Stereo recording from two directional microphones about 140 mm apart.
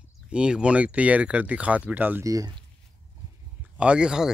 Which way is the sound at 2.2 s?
25° right (ahead or behind).